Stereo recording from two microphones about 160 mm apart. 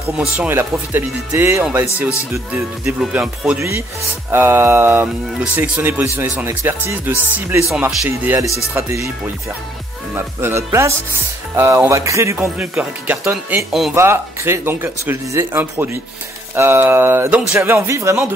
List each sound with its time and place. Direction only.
0.4 s speech: 15° right (ahead or behind)
10.1 s speech: 15° right (ahead or behind)